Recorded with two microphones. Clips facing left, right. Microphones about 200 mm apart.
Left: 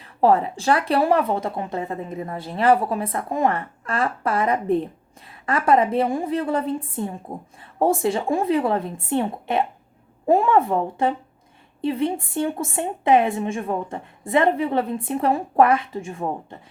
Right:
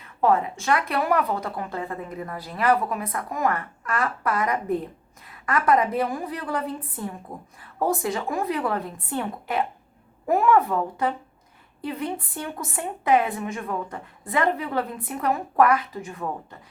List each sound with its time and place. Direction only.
0.0 s speech: 35° left (ahead or behind)